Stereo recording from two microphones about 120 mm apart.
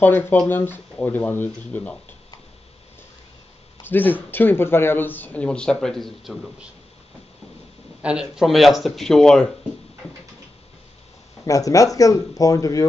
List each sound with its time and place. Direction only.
0.0 s speech: 15° left (ahead or behind)
3.8 s speech: 15° left (ahead or behind); by 6.7 s centre (ahead or behind)
8.0 s speech: 5° right (ahead or behind)
11.4 s speech: 30° left (ahead or behind)